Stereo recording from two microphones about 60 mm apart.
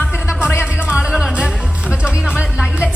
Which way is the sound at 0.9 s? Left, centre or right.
Centre.